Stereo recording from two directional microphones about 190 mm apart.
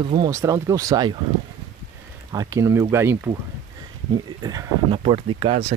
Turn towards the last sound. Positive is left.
turn(degrees=-30)  # may be behind; listen again after turning